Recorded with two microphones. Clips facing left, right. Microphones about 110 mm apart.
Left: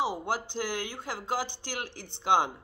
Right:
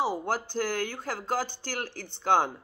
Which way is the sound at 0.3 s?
45° right (ahead or behind).